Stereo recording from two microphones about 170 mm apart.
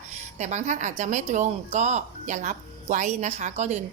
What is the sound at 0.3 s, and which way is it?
A woman's voice, 45° right (ahead or behind).